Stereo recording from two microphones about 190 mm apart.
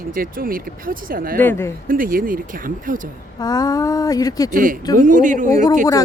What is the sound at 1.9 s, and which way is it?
Speech, 45° right (ahead or behind).